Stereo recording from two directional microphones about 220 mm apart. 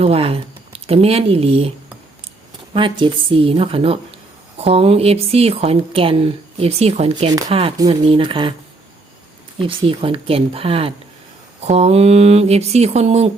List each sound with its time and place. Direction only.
0.0 s speech: 25° right (ahead or behind)
2.7 s a woman's voice: 20° right (ahead or behind)
9.6 s a woman's voice: 25° right (ahead or behind)